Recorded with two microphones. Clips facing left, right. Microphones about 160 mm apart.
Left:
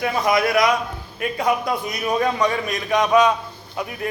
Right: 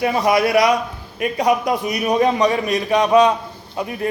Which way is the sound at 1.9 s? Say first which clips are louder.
Right 5 dB; 15° right (ahead or behind).